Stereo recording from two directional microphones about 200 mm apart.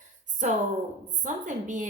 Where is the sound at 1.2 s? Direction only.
40° right (ahead or behind).